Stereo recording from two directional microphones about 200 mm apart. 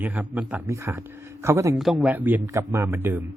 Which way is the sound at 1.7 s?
Centre (ahead or behind).